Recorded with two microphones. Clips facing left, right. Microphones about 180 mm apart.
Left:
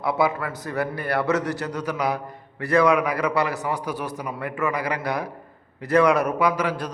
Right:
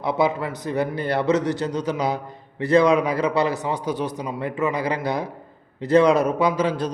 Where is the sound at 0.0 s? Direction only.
20° right (ahead or behind).